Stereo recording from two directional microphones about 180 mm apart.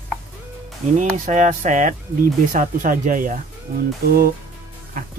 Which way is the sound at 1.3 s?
40° right (ahead or behind).